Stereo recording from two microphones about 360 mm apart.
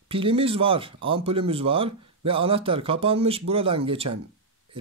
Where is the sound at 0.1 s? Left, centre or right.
Centre.